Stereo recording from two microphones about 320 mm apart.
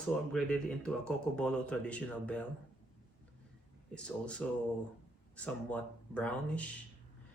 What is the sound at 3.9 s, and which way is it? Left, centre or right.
Speech, centre.